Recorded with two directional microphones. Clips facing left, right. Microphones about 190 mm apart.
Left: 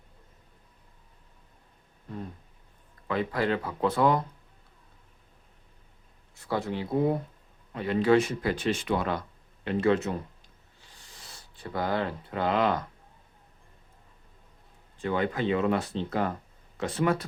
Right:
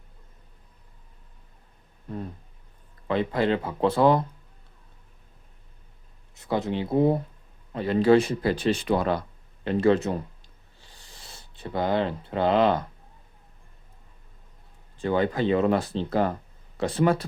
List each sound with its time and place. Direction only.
3.1 s speech: 25° right (ahead or behind)
6.3 s speech: 20° right (ahead or behind)
10.8 s a sound: 30° right (ahead or behind)
14.9 s speech: 30° right (ahead or behind)